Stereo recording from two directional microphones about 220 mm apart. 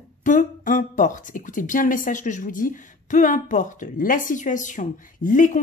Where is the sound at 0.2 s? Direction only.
35° left (ahead or behind).